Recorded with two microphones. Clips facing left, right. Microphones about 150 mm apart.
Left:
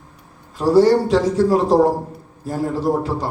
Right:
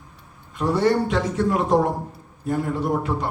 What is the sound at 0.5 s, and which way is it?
Music, 35° left (ahead or behind).